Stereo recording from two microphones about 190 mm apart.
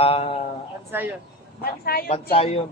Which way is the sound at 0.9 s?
10° right (ahead or behind).